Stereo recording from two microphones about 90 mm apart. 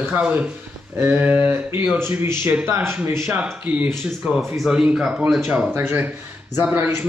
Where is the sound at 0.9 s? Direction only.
25° right (ahead or behind).